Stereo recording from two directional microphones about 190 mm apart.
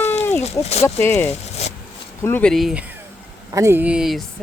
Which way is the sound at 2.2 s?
10° left (ahead or behind).